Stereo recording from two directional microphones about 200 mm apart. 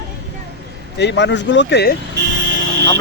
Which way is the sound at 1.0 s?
60° left (ahead or behind).